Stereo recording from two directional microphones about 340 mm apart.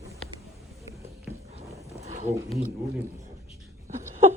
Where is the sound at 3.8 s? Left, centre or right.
Centre.